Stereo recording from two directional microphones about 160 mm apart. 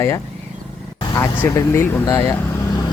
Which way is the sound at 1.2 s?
15° left (ahead or behind).